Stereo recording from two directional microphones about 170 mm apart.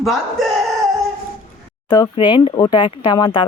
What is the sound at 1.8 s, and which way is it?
Speech, 20° left (ahead or behind).